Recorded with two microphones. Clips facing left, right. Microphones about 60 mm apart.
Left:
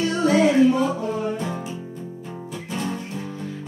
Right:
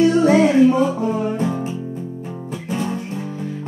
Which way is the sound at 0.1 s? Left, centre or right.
Right.